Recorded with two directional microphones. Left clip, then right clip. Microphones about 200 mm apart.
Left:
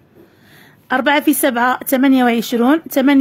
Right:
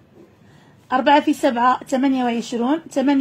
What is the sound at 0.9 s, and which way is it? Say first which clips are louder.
Speech: left 1 dB; 40° left (ahead or behind).